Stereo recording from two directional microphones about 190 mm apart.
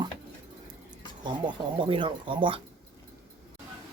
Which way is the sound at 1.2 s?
25° right (ahead or behind).